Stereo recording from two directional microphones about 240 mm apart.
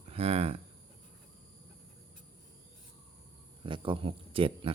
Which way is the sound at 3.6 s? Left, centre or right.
Right.